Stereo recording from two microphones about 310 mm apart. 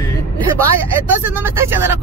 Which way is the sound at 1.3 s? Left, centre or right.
Centre.